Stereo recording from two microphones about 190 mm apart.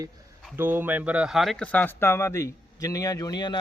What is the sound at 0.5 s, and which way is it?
A man's voice, 10° right (ahead or behind).